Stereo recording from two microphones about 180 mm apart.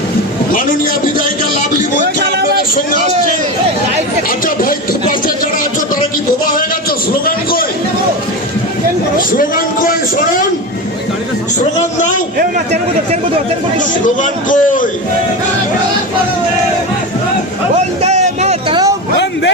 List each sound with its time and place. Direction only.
2.1 s a sound: 65° right (ahead or behind)
6.4 s a sound: 50° left (ahead or behind)
9.1 s a man's voice: 50° left (ahead or behind)
11.9 s a man's voice: 45° left (ahead or behind)
14.2 s a man's voice: 45° left (ahead or behind)
18.0 s music: 40° right (ahead or behind)